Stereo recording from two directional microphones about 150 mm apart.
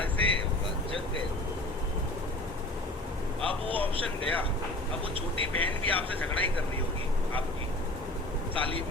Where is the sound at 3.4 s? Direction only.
35° right (ahead or behind).